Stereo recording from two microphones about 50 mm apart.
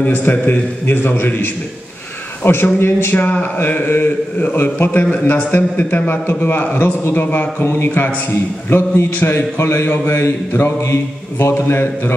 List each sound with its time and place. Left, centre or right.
0.1 s a man's voice: left